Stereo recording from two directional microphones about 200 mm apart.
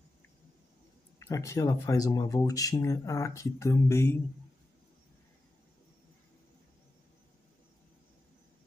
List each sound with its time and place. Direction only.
1.2 s speech: 15° left (ahead or behind)